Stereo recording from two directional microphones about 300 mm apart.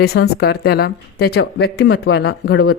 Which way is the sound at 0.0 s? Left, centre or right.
Left.